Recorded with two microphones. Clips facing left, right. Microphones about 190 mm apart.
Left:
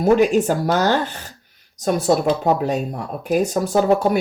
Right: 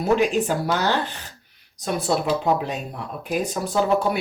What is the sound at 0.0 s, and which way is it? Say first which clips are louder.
Speech: left 5 dB; 45° left (ahead or behind).